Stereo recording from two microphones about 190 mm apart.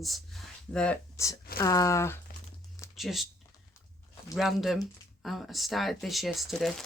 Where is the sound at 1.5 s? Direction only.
15° left (ahead or behind).